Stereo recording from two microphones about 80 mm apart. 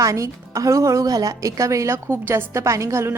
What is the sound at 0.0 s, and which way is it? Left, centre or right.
A woman's voice, right.